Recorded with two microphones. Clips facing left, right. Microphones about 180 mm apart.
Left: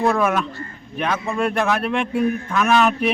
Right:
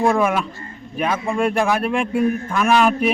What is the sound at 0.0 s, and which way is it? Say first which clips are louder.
Speech: right 1 dB; 10° right (ahead or behind).